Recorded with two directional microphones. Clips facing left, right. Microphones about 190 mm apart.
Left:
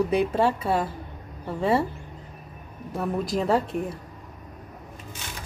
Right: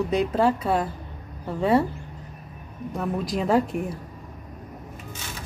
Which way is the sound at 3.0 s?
Centre (ahead or behind).